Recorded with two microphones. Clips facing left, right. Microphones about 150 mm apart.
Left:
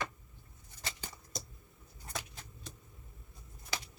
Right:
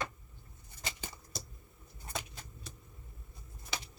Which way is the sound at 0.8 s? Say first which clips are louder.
Right 1 dB; 20° right (ahead or behind).